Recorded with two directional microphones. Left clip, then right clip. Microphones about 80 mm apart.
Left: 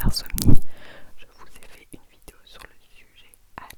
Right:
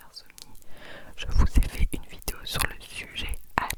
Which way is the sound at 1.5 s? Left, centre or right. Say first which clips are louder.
Right 12 dB; right.